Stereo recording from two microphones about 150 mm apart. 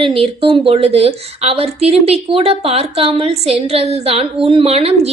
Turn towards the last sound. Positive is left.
turn(degrees=-40)  # may be behind; listen again after turning